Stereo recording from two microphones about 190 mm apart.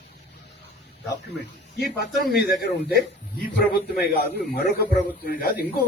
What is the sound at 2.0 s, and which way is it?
A man's voice, 55° left (ahead or behind).